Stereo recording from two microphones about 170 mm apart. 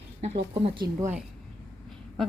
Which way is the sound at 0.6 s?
30° right (ahead or behind).